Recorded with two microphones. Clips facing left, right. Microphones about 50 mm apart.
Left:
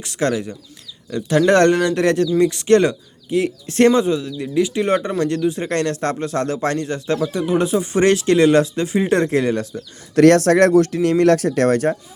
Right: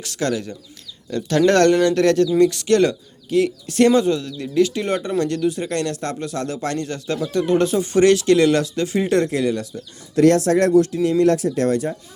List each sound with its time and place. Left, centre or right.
0.0 s speech: left
1.1 s speech: centre
1.5 s speech: centre
3.7 s speech: left
3.9 s a man's voice: centre
7.2 s a man's voice: centre
8.0 s speech: left
10.2 s speech: left